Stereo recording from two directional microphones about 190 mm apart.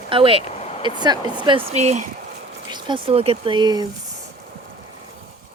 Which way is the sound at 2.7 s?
25° right (ahead or behind).